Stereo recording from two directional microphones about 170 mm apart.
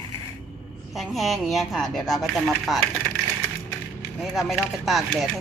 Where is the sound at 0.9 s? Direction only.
Centre (ahead or behind).